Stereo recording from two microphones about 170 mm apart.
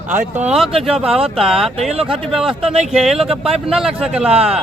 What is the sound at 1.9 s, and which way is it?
Speech, 35° right (ahead or behind).